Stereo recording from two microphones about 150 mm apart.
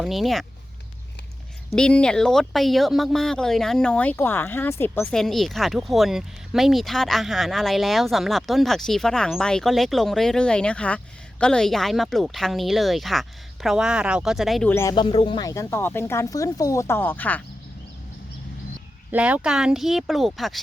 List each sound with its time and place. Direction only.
0.0 s speech: centre (ahead or behind)
1.7 s speech: 5° left (ahead or behind)
5.1 s speech: centre (ahead or behind)
14.7 s speech: 15° left (ahead or behind)
14.9 s speech: 35° left (ahead or behind); by 17.4 s 10° left (ahead or behind)
19.1 s speech: 10° right (ahead or behind)